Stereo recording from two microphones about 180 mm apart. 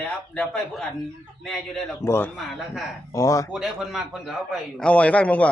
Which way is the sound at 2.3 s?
Centre (ahead or behind).